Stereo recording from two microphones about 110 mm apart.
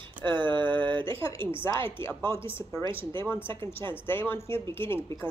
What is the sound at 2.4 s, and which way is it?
Speech, 20° left (ahead or behind).